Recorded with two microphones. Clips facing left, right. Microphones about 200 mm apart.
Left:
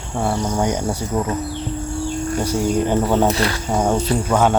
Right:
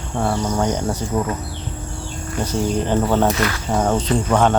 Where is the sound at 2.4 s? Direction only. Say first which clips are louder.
Even; 10° left (ahead or behind).